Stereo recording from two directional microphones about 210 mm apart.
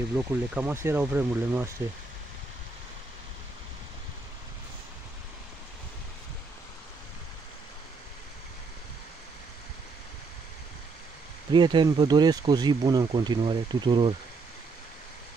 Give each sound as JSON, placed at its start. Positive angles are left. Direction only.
{"t": 0.2, "sound": "speech", "side_deg": -10}
{"t": 11.5, "sound": "speech", "side_deg": -20}